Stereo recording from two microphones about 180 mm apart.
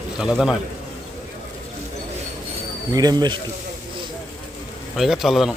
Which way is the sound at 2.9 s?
20° right (ahead or behind).